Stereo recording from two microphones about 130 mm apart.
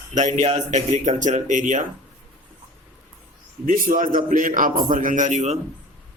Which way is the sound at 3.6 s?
90° right.